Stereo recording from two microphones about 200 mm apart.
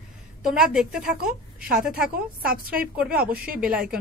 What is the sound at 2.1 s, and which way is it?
A woman's voice, 45° right (ahead or behind).